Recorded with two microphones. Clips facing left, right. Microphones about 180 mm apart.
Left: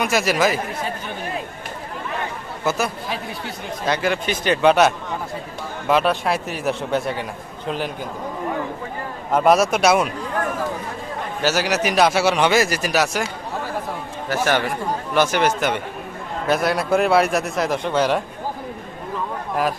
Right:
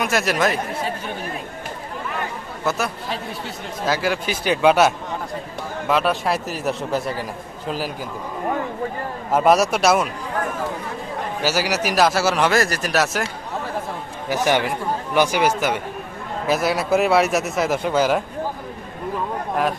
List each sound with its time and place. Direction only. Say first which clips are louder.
0.0 s a man's voice: left 1 dB; centre (ahead or behind)
2.6 s a man's voice: left 1 dB; centre (ahead or behind)
9.3 s a man's voice: even; centre (ahead or behind)
11.4 s a man's voice: left 2 dB; 10° right (ahead or behind)
14.3 s a man's voice: right 1 dB; 15° right (ahead or behind)